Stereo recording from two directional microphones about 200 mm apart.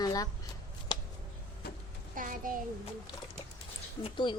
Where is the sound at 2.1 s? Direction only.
45° right (ahead or behind).